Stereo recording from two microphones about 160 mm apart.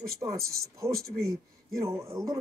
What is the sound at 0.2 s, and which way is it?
Speech, 20° right (ahead or behind).